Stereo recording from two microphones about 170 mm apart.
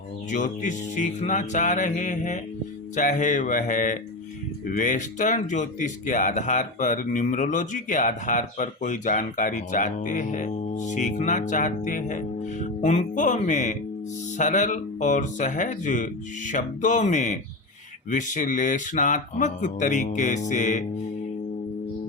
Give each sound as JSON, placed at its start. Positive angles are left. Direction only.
{"t": 0.3, "sound": "speech", "side_deg": 50}